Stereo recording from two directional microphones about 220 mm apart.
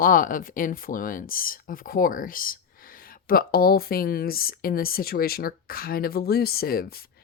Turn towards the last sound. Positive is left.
turn(degrees=45)  # may be behind; listen again after turning